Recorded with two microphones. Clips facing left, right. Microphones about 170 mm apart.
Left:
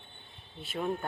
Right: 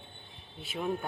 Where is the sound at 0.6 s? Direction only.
Centre (ahead or behind).